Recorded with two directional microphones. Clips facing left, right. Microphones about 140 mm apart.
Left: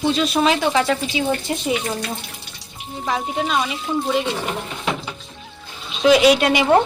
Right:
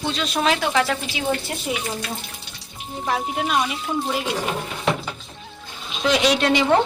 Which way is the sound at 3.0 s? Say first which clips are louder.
Left 1 dB; 5° right (ahead or behind).